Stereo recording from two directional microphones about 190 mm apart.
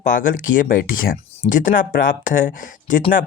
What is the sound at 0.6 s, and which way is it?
Speech, 45° left (ahead or behind).